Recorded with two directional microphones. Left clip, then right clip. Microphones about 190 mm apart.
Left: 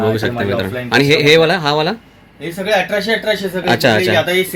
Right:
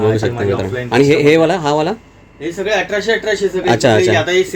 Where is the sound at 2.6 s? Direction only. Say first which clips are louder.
Left 1 dB; 35° left (ahead or behind).